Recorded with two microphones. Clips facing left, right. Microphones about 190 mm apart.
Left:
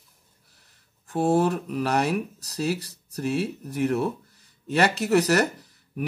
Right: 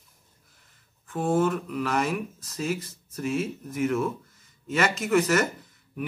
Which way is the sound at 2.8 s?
70° left (ahead or behind).